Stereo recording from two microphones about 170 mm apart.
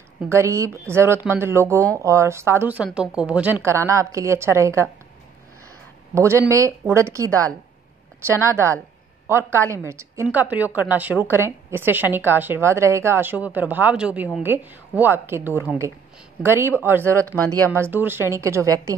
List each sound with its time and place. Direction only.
0.3 s speech: 15° right (ahead or behind)
6.1 s speech: 15° right (ahead or behind)
9.7 s speech: 15° right (ahead or behind)